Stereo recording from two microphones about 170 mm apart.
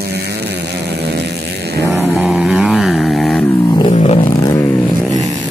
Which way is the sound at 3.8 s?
35° left (ahead or behind).